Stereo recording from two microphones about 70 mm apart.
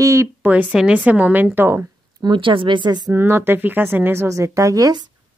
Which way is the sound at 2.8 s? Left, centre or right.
Right.